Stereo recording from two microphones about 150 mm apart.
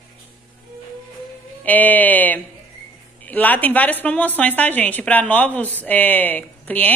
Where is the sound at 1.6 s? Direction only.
10° left (ahead or behind).